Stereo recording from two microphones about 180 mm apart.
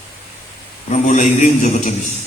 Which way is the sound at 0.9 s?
40° left (ahead or behind).